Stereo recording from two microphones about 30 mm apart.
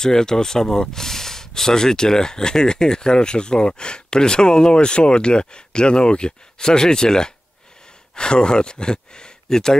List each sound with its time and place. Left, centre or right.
0.0 s speech: left